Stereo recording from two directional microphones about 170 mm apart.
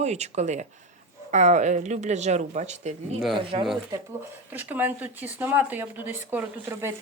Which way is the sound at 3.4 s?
30° right (ahead or behind).